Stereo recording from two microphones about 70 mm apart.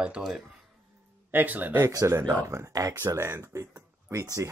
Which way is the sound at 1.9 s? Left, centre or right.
Right.